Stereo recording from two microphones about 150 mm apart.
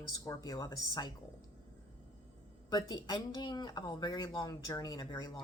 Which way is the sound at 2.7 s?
25° left (ahead or behind).